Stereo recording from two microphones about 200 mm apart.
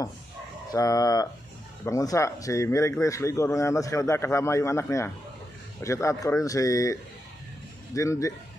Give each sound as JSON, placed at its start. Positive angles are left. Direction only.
{"t": 0.7, "sound": "speech", "side_deg": 15}